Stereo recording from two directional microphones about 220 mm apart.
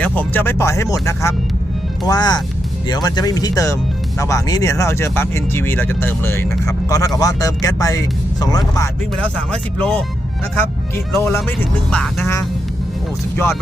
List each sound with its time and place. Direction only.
0.0 s speech: 10° left (ahead or behind)